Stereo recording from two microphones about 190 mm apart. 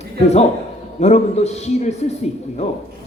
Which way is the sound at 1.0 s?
35° left (ahead or behind).